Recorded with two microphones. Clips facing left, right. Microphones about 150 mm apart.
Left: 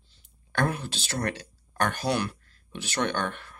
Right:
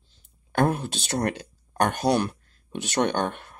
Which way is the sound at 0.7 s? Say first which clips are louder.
Right 5 dB; 50° right (ahead or behind).